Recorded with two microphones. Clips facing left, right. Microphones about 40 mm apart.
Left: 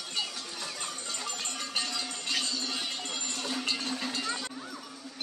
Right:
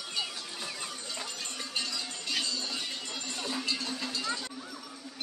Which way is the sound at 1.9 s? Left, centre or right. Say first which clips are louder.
Left 1 dB; left.